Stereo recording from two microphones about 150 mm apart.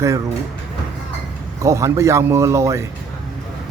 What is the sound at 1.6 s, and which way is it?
A man's voice, 20° right (ahead or behind).